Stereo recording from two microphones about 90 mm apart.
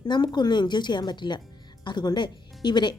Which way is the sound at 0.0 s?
55° left (ahead or behind).